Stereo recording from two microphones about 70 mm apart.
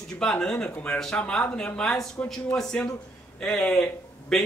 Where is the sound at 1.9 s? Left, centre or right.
Centre.